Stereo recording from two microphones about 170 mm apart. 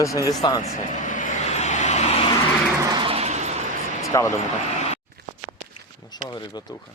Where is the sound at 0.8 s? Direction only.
45° left (ahead or behind).